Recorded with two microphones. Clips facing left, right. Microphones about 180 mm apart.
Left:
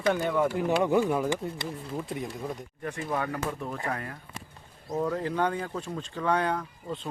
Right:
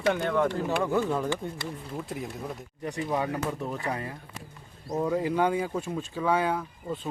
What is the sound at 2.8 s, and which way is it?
Speech, 15° right (ahead or behind).